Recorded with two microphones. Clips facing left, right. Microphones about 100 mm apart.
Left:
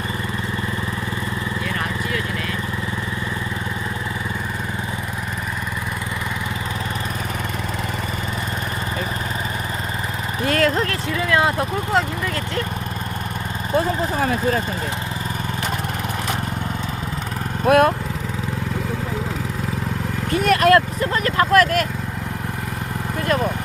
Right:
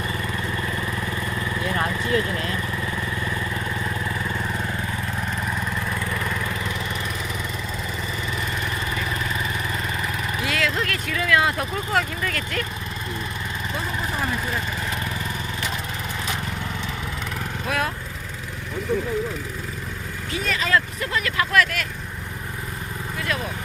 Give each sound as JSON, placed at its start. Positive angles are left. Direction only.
{"t": 1.6, "sound": "vehicle", "side_deg": -30}
{"t": 10.4, "sound": "vehicle", "side_deg": 45}
{"t": 10.8, "sound": "vehicle", "side_deg": 25}
{"t": 17.7, "sound": "lawn mower", "side_deg": 55}
{"t": 20.3, "sound": "vehicle", "side_deg": 60}
{"t": 21.0, "sound": "vehicle", "side_deg": 40}
{"t": 23.2, "sound": "vehicle", "side_deg": 45}